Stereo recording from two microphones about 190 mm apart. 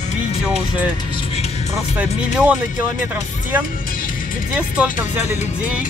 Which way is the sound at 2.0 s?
5° right (ahead or behind).